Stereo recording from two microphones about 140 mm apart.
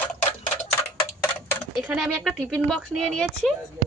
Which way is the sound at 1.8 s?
Centre (ahead or behind).